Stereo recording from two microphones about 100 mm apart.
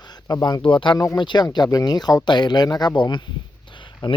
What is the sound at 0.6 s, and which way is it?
Speech, 55° left (ahead or behind).